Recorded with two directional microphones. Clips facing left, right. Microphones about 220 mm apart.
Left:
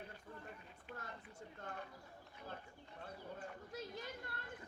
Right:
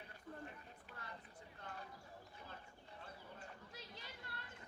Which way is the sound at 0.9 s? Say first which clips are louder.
Left 3 dB; 45° left (ahead or behind).